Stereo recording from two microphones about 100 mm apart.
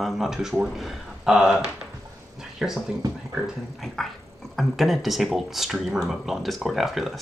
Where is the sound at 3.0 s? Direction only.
40° right (ahead or behind).